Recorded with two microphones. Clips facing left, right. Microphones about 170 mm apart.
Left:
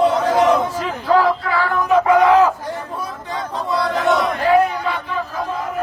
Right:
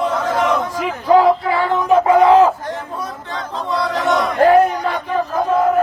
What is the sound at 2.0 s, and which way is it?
Crowd, 30° right (ahead or behind).